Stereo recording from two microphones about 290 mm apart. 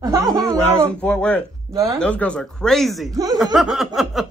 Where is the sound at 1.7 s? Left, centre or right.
Centre.